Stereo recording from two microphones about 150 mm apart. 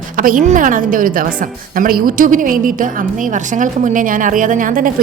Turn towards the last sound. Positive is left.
turn(degrees=-65)  # may be behind; listen again after turning